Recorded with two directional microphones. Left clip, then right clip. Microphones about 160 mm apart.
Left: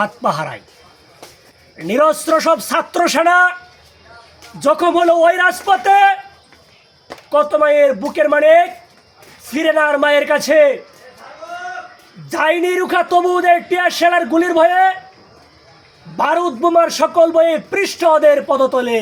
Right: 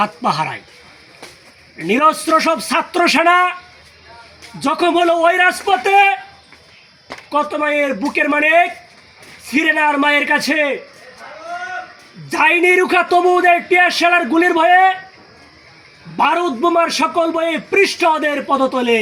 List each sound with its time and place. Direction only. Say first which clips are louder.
0.0 s a man's voice: right 1 dB; 20° left (ahead or behind)
1.9 s a man's voice: even; 20° left (ahead or behind)
4.6 s a man's voice: left 2 dB; 20° left (ahead or behind)
7.3 s a man's voice: left 5 dB; 20° left (ahead or behind)
12.3 s a man's voice: right 3 dB; 20° left (ahead or behind)
16.1 s a man's voice: even; 20° left (ahead or behind)